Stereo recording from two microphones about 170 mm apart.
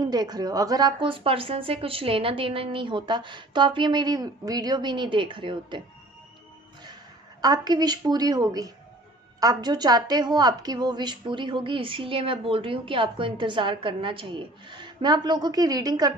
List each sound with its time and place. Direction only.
0.0 s a woman's voice: 25° right (ahead or behind)
7.4 s a woman's voice: 25° right (ahead or behind)